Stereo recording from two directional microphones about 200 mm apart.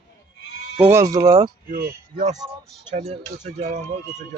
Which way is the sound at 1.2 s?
30° right (ahead or behind).